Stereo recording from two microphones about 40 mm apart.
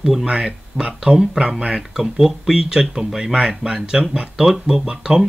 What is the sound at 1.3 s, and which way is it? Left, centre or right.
Speech, right.